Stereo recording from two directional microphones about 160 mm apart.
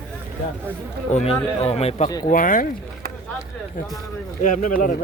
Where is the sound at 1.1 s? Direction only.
45° left (ahead or behind).